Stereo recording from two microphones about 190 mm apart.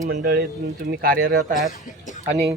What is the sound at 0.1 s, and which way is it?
Speech, 50° right (ahead or behind).